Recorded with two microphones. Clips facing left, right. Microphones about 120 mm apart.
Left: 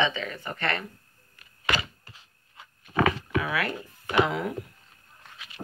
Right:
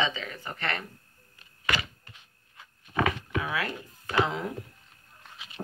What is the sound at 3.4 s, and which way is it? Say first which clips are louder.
Speech: left 2 dB; 20° right (ahead or behind).